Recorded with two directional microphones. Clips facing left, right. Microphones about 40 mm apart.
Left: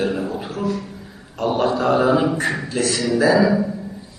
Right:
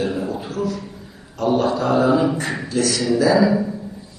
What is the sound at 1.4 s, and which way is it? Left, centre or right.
A man's voice, left.